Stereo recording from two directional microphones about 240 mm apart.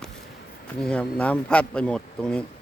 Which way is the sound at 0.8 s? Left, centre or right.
Centre.